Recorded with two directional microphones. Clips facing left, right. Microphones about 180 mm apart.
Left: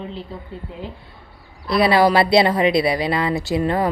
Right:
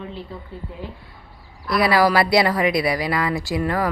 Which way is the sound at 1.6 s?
25° left (ahead or behind).